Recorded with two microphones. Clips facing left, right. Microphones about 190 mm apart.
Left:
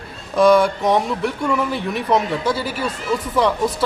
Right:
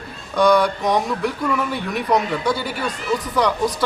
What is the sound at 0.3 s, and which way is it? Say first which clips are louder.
Speech: left 3 dB; 25° left (ahead or behind).